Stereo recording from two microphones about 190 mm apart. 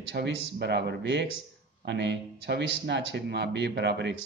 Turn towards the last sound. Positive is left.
turn(degrees=-65)  # may be behind; listen again after turning